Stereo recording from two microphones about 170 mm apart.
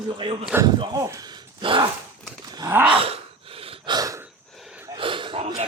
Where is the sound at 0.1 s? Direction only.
30° right (ahead or behind).